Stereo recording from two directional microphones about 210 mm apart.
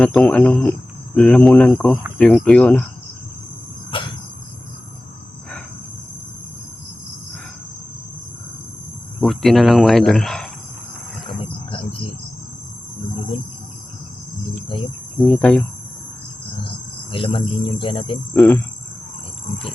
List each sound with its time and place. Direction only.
0.0 s speech: 5° left (ahead or behind)
9.2 s speech: centre (ahead or behind)
11.3 s wild animals: 25° left (ahead or behind)
15.3 s speech: 5° left (ahead or behind)
17.1 s speech: 25° left (ahead or behind)
18.3 s speech: 10° left (ahead or behind)